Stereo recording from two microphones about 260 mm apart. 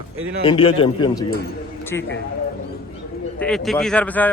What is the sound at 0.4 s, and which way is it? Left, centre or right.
Speech, left.